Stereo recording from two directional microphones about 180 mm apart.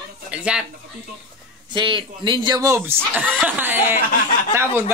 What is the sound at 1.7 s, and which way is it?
Speech, 25° right (ahead or behind).